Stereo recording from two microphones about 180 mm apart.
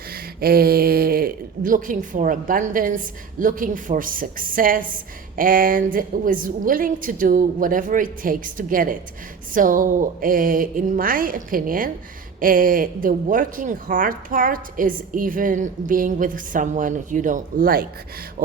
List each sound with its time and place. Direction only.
0.1 s speech: 55° right (ahead or behind)